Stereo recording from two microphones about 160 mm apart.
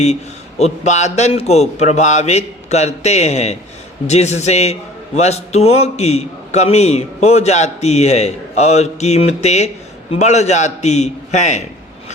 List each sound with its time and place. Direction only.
0.6 s a man's voice: 45° left (ahead or behind)